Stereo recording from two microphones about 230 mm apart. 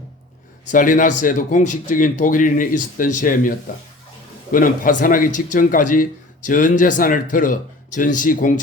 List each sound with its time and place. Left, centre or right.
0.7 s a man's voice: left